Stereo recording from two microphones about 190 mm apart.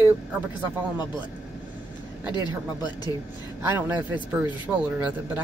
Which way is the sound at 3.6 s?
10° right (ahead or behind).